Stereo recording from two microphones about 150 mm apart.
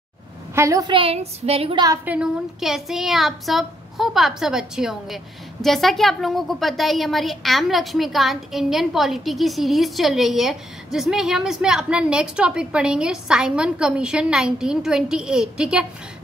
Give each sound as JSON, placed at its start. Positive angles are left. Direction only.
{"t": 0.6, "sound": "a woman's voice", "side_deg": -20}
{"t": 0.9, "sound": "speech", "side_deg": -40}
{"t": 2.0, "sound": "speech", "side_deg": -5}